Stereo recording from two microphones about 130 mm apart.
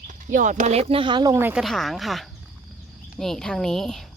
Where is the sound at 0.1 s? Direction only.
75° right (ahead or behind); by 1.4 s 35° right (ahead or behind).